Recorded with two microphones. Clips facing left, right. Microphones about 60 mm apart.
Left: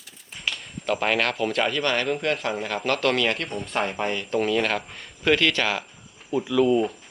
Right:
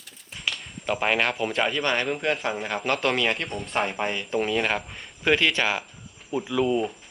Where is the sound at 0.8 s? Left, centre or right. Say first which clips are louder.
Left 1 dB; centre.